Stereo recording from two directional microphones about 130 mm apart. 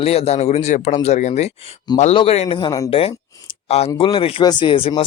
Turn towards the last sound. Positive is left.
turn(degrees=45)  # may be behind; listen again after turning